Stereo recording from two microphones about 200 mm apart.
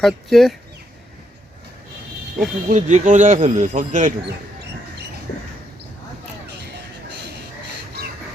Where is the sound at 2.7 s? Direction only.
35° right (ahead or behind).